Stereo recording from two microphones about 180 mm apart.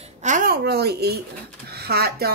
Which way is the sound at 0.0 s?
40° right (ahead or behind).